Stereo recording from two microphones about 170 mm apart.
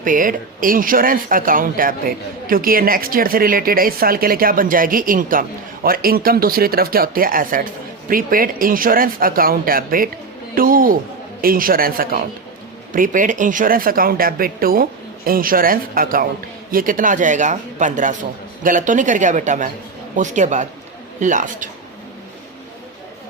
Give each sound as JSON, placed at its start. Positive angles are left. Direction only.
{"t": 0.0, "sound": "speech", "side_deg": -50}